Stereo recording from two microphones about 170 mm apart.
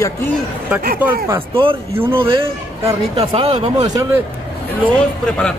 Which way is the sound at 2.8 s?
25° right (ahead or behind).